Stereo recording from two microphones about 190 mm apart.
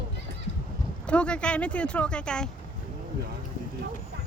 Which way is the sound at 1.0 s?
5° left (ahead or behind).